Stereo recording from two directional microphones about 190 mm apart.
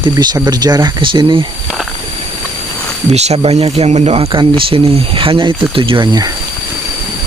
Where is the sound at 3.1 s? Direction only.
35° right (ahead or behind).